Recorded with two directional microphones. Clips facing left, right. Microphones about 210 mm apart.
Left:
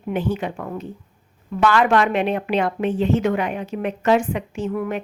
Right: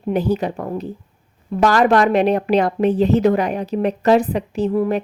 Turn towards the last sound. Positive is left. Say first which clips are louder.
# right 6 dB
turn(degrees=-35)  # may be behind; listen again after turning